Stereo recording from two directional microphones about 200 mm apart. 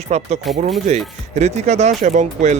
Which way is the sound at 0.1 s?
30° right (ahead or behind).